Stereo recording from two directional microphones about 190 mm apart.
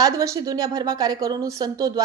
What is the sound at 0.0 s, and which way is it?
A woman's voice, 20° right (ahead or behind).